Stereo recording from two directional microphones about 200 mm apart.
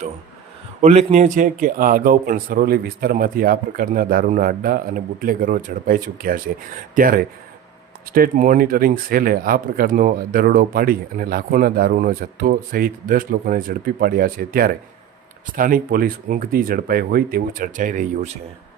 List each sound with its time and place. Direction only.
0.8 s speech: 35° right (ahead or behind)